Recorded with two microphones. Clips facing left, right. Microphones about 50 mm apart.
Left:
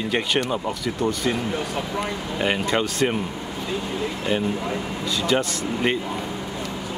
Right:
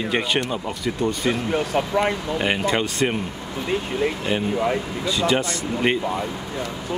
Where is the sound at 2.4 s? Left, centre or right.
Centre.